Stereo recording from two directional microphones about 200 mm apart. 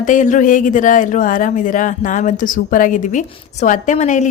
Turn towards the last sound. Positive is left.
turn(degrees=35)  # may be behind; listen again after turning